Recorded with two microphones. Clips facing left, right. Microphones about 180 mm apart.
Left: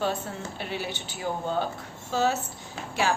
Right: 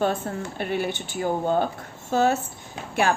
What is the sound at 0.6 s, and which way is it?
Speech, 55° right (ahead or behind).